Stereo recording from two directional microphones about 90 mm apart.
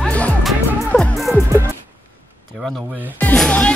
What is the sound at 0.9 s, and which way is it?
Music, 15° left (ahead or behind).